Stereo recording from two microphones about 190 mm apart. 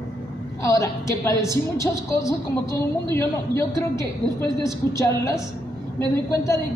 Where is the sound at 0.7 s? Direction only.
15° left (ahead or behind).